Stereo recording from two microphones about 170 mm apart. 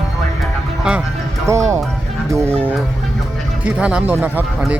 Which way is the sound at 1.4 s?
15° right (ahead or behind).